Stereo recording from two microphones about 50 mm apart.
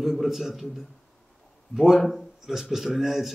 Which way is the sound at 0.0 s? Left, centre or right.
Centre.